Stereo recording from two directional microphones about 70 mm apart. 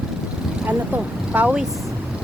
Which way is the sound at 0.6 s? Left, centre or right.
Right.